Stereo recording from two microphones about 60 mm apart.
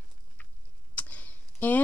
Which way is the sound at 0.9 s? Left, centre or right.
Left.